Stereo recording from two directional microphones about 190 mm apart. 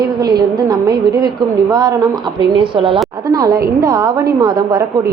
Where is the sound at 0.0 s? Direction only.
20° right (ahead or behind).